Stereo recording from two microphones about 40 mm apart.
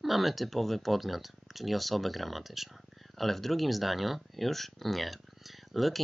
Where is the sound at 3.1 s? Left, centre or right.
Centre.